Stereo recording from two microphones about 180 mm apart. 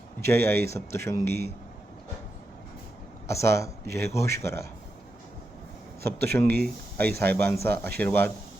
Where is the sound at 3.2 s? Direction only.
15° left (ahead or behind).